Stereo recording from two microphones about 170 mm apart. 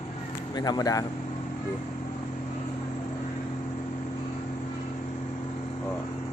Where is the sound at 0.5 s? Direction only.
25° left (ahead or behind).